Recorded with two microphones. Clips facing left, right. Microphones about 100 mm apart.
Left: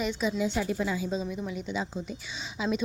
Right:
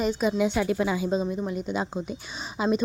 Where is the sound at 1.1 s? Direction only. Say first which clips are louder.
Right 5 dB; 50° right (ahead or behind).